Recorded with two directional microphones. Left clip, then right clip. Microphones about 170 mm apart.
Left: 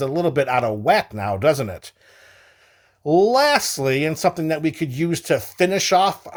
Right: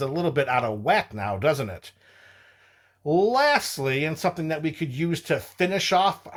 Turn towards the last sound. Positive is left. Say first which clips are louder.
# left 4 dB
turn(degrees=40)  # may be behind; listen again after turning